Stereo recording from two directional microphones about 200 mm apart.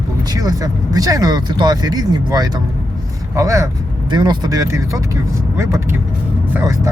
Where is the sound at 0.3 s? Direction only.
20° right (ahead or behind).